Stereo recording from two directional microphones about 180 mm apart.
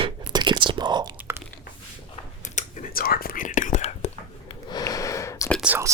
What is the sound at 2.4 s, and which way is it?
Whispering, 45° left (ahead or behind).